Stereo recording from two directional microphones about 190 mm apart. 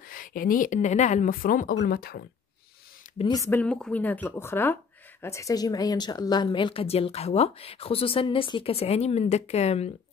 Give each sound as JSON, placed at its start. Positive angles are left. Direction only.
{"t": 0.1, "sound": "speech", "side_deg": 45}
{"t": 3.2, "sound": "a woman's voice", "side_deg": 20}